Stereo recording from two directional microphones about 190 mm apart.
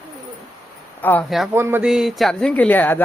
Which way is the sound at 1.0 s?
10° left (ahead or behind).